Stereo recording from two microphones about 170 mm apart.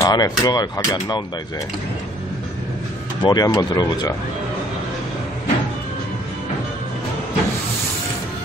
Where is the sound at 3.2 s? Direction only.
20° left (ahead or behind).